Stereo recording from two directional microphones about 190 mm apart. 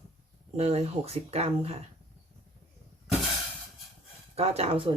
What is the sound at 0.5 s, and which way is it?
Speech, 35° right (ahead or behind).